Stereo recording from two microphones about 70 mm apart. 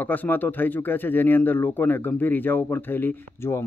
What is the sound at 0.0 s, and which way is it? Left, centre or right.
Speech, left.